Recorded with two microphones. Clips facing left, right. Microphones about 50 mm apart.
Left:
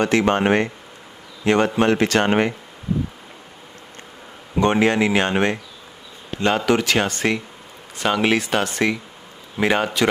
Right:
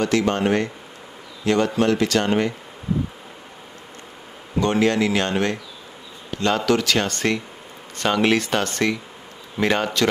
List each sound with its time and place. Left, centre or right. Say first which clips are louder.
0.0 s speech: left 2 dB; left
4.6 s speech: left 2 dB; left